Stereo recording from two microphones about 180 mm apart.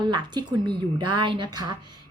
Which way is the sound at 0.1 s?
25° right (ahead or behind).